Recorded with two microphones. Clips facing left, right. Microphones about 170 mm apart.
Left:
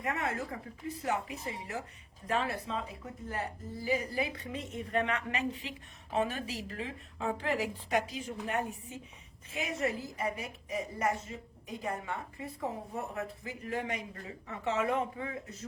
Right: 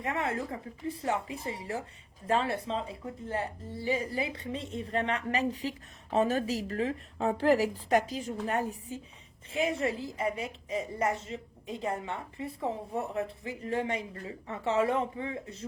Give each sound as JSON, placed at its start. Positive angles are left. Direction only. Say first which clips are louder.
{"t": 0.0, "sound": "a woman's voice", "louder": "right 2 dB", "side_deg": -25}